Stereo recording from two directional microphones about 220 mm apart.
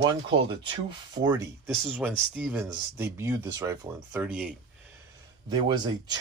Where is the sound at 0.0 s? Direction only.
20° right (ahead or behind); by 4.6 s 5° right (ahead or behind).